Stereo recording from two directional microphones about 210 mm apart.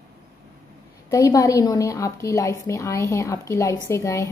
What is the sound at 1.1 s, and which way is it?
A woman's voice, 15° left (ahead or behind).